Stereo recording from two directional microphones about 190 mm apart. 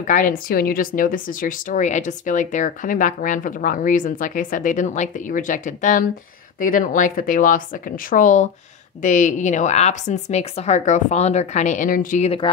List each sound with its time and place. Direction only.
0.0 s a woman's voice: 45° left (ahead or behind)